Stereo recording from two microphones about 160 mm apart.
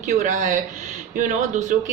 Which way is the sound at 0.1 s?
50° right (ahead or behind).